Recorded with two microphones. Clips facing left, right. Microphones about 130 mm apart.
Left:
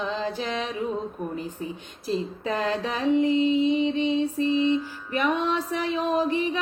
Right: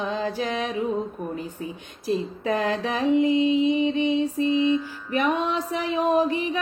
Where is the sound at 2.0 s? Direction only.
15° right (ahead or behind).